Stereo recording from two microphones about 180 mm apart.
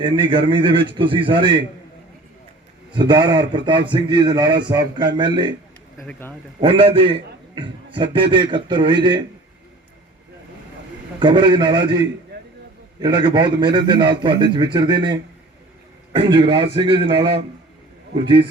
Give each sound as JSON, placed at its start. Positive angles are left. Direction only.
{"t": 0.0, "sound": "a man's voice", "side_deg": -30}
{"t": 2.9, "sound": "a man's voice", "side_deg": -25}
{"t": 6.6, "sound": "a man's voice", "side_deg": -30}
{"t": 11.2, "sound": "a man's voice", "side_deg": -25}
{"t": 12.3, "sound": "chop", "side_deg": -70}
{"t": 13.0, "sound": "a man's voice", "side_deg": -25}